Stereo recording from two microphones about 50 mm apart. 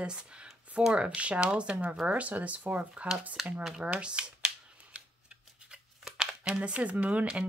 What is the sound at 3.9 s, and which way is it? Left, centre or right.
Speech, right.